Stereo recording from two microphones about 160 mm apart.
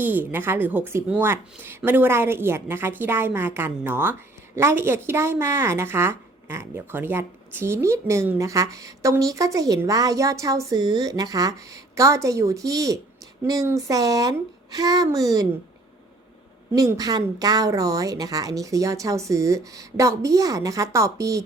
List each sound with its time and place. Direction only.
0.0 s a woman's voice: 10° right (ahead or behind)
16.7 s a woman's voice: 20° right (ahead or behind)